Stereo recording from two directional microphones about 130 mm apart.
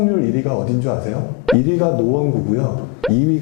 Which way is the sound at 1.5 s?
Centre (ahead or behind).